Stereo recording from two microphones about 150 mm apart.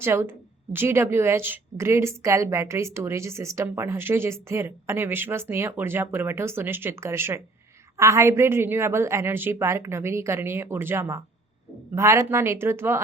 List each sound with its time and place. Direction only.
0.0 s a woman's voice: 15° right (ahead or behind)